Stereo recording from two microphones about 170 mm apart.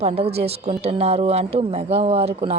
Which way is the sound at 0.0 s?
35° right (ahead or behind).